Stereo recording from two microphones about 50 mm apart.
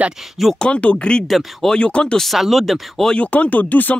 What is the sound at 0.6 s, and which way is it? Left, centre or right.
Speech, left.